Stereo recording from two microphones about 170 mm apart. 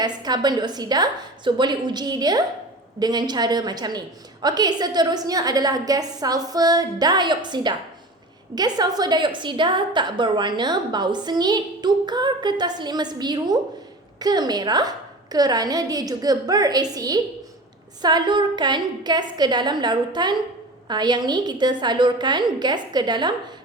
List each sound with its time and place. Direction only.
0.0 s a woman's voice: 25° right (ahead or behind)